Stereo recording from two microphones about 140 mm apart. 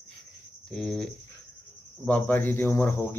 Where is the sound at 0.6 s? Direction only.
5° left (ahead or behind).